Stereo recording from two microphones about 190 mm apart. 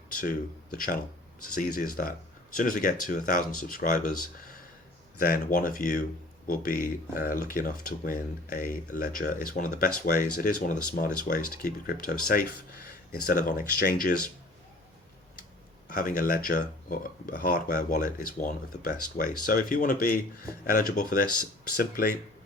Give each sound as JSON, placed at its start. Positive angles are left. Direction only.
{"t": 0.2, "sound": "speech", "side_deg": 45}
{"t": 15.9, "sound": "speech", "side_deg": 45}